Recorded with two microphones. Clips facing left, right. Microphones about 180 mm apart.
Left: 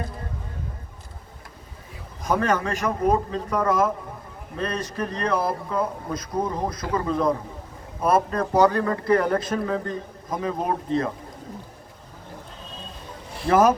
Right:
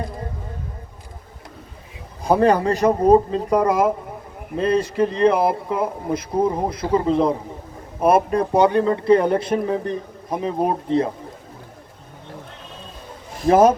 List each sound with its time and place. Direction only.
2.2 s a man's voice: 35° right (ahead or behind)
8.1 s speech: 10° right (ahead or behind)
8.5 s speech: 25° right (ahead or behind)
13.5 s speech: 30° right (ahead or behind)